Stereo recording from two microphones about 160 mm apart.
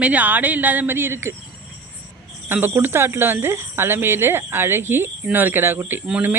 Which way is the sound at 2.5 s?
15° right (ahead or behind).